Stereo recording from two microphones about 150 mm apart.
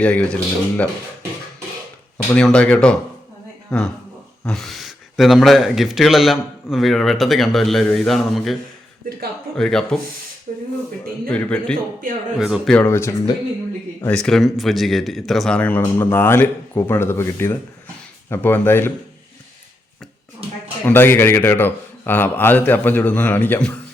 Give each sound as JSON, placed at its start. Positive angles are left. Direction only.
{"t": 0.0, "sound": "speech", "side_deg": 10}
{"t": 2.3, "sound": "a man's voice", "side_deg": 5}
{"t": 9.6, "sound": "a man's voice", "side_deg": 5}
{"t": 11.3, "sound": "a man's voice", "side_deg": 10}
{"t": 12.7, "sound": "speech", "side_deg": 15}
{"t": 14.1, "sound": "a man's voice", "side_deg": 5}
{"t": 20.8, "sound": "speech", "side_deg": 15}